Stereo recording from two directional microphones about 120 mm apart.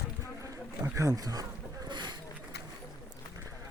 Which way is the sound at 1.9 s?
40° right (ahead or behind).